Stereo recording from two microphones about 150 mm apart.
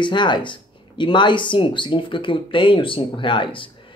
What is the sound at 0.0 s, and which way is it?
Speech, 30° left (ahead or behind).